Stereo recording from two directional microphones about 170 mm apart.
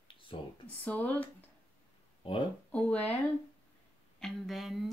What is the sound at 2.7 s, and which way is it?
Speech, 10° left (ahead or behind).